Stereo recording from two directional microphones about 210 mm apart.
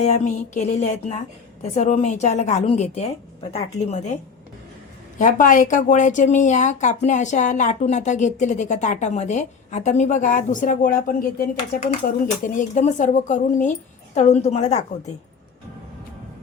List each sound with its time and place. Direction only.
0.0 s a woman's voice: 35° left (ahead or behind)